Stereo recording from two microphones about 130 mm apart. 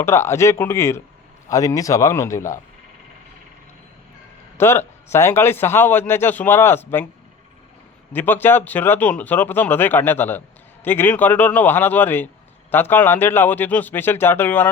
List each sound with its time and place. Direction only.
0.0 s speech: 20° left (ahead or behind)
4.5 s a man's voice: 20° left (ahead or behind)
8.1 s a man's voice: 15° left (ahead or behind)